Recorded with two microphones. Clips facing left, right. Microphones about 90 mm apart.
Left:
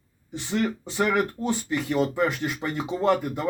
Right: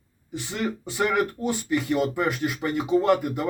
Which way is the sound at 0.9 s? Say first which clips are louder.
Even; 10° right (ahead or behind).